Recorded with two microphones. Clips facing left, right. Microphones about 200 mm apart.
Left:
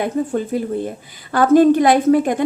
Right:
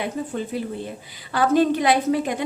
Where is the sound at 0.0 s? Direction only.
50° left (ahead or behind).